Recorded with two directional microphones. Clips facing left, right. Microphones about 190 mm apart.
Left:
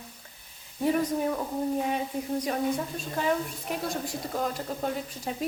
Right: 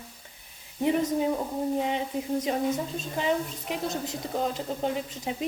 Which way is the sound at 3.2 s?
20° right (ahead or behind).